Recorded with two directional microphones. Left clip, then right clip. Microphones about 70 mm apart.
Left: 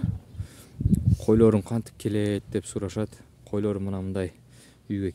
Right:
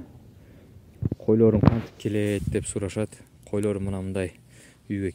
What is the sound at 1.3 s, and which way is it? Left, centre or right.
Speech, left.